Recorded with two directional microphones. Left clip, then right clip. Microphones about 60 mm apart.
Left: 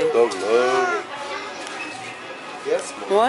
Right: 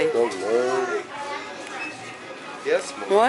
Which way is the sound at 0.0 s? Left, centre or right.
Centre.